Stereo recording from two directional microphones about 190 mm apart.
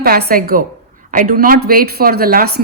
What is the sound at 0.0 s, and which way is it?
A woman's voice, 50° right (ahead or behind).